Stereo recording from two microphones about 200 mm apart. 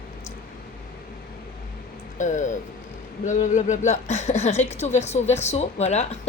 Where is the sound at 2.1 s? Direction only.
40° left (ahead or behind).